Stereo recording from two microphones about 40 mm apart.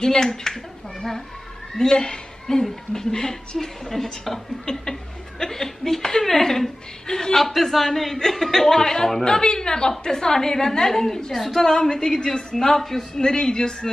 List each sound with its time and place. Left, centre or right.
0.0 s a man's voice: centre
1.8 s a man's voice: centre
11.6 s a man's voice: centre